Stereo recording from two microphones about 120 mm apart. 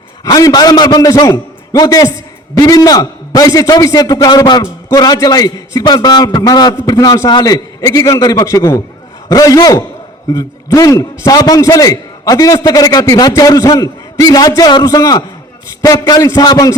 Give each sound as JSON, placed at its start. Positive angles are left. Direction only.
{"t": 0.3, "sound": "a man's voice", "side_deg": 30}